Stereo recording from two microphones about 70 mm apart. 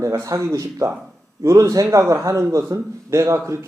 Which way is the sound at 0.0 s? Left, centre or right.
Right.